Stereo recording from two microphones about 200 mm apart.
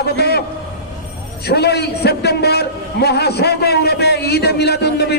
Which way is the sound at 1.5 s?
55° left (ahead or behind).